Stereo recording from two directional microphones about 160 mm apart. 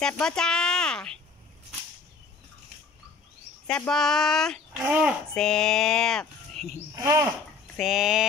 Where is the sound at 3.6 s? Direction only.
5° left (ahead or behind).